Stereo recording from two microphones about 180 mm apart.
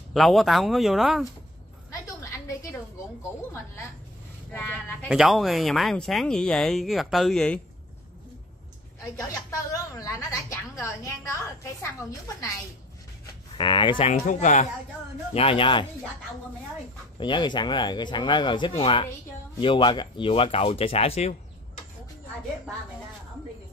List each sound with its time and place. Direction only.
0.1 s speech: centre (ahead or behind)
4.5 s speech: 10° left (ahead or behind)
5.1 s speech: centre (ahead or behind)
9.1 s a woman's voice: 20° left (ahead or behind)
13.6 s speech: 25° left (ahead or behind); by 14.7 s 45° left (ahead or behind)
15.3 s speech: 30° left (ahead or behind)
17.2 s speech: 25° left (ahead or behind)